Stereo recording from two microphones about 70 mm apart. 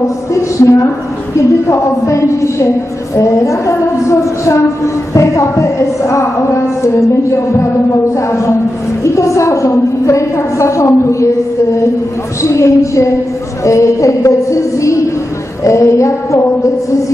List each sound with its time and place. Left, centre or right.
0.3 s a woman's voice: left
9.0 s speech: left
12.4 s speech: left